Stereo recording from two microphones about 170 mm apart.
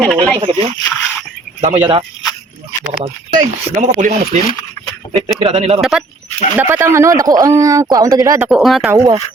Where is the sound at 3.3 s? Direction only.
50° right (ahead or behind).